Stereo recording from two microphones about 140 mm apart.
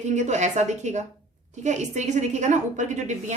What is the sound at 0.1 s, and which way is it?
A woman's voice, 55° right (ahead or behind).